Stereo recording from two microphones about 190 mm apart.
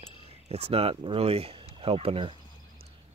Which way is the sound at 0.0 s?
30° right (ahead or behind).